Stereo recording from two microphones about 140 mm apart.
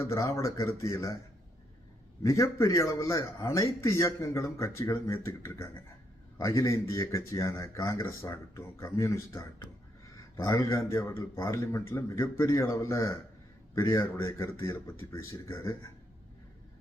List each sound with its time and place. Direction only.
0.0 s a man's voice: 20° left (ahead or behind)
2.2 s a man's voice: 20° left (ahead or behind)